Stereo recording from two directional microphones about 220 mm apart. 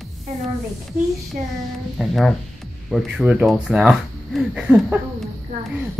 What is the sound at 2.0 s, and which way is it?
Speech, centre (ahead or behind).